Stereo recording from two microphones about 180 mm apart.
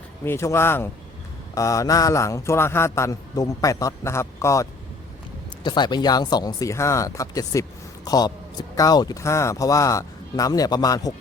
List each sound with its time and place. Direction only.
0.3 s speech: 15° left (ahead or behind)